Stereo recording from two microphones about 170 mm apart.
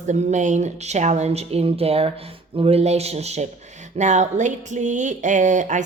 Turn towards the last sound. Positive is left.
turn(degrees=-45)  # may be behind; listen again after turning